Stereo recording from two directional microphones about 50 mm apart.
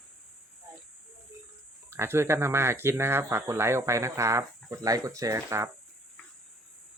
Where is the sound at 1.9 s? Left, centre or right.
Right.